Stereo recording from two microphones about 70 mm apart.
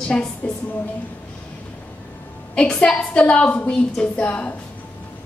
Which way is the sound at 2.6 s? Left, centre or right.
Centre.